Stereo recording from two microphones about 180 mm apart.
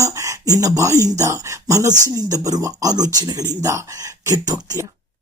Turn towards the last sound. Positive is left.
turn(degrees=-20)  # may be behind; listen again after turning